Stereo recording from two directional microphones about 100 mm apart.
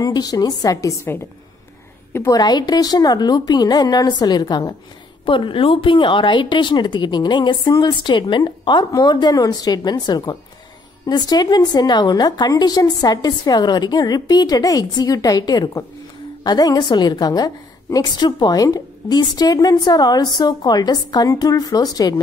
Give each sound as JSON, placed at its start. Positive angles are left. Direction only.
{"t": 0.0, "sound": "a woman's voice", "side_deg": 40}
{"t": 2.1, "sound": "a woman's voice", "side_deg": 35}
{"t": 5.2, "sound": "a woman's voice", "side_deg": 60}